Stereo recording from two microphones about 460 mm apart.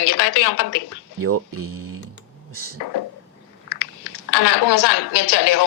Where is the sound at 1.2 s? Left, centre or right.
Right.